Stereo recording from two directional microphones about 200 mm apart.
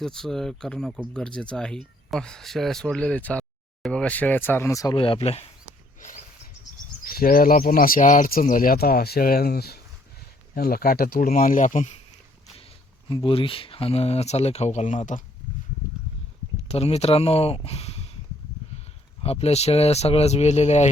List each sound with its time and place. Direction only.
0.0 s speech: centre (ahead or behind); by 5.5 s 30° left (ahead or behind)
6.0 s a sound: 40° left (ahead or behind)
7.0 s speech: 45° left (ahead or behind)
13.1 s speech: 25° left (ahead or behind)
16.6 s speech: 30° left (ahead or behind)
19.2 s speech: 30° left (ahead or behind)